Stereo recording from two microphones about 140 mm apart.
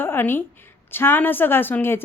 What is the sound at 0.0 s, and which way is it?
A woman's voice, 15° left (ahead or behind).